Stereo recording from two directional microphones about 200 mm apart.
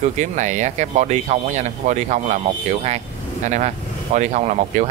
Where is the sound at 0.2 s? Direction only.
35° right (ahead or behind).